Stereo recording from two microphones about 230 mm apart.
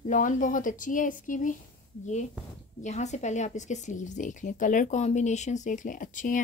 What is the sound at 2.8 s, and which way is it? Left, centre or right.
Speech, left.